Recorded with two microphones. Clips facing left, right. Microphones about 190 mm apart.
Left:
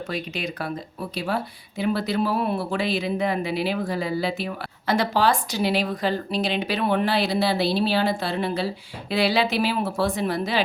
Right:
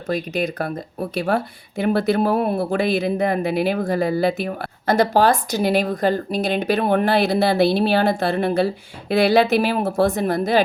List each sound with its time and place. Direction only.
0.1 s speech: 45° right (ahead or behind)